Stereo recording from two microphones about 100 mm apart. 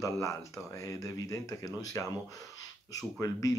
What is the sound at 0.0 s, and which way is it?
Speech, 30° left (ahead or behind).